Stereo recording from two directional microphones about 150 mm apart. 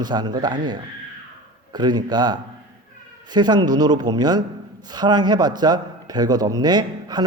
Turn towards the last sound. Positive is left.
turn(degrees=-30)  # may be behind; listen again after turning